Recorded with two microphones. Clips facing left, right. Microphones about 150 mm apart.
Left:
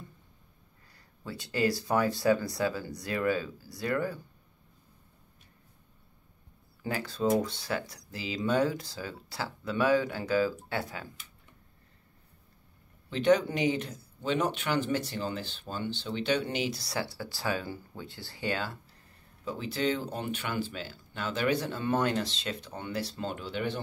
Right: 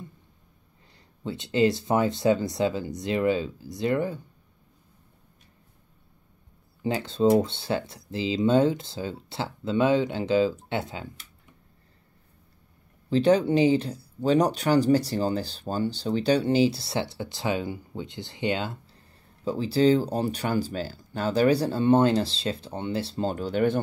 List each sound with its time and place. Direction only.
0.9 s speech: 20° right (ahead or behind)
6.8 s speech: 20° right (ahead or behind)
13.1 s speech: 30° right (ahead or behind)
19.4 s speech: 30° right (ahead or behind)